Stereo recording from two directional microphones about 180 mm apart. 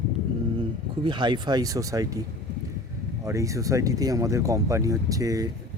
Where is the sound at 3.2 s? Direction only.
15° right (ahead or behind).